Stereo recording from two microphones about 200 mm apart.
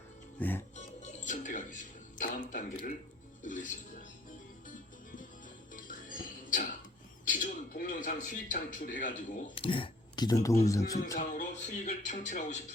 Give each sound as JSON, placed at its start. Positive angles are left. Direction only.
{"t": 0.3, "sound": "music", "side_deg": 10}
{"t": 0.8, "sound": "music", "side_deg": 35}
{"t": 3.4, "sound": "speech", "side_deg": 40}
{"t": 5.7, "sound": "music", "side_deg": 45}
{"t": 7.3, "sound": "a sound", "side_deg": 40}
{"t": 9.6, "sound": "speech", "side_deg": 25}
{"t": 11.2, "sound": "speech", "side_deg": 40}